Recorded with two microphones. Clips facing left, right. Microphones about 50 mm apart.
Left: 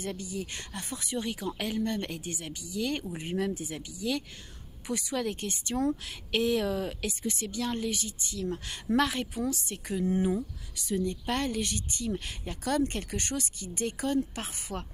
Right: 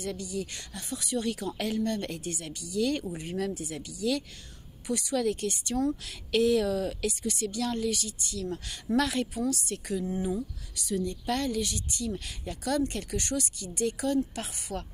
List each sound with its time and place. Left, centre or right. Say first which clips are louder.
0.0 s speech: right 2 dB; left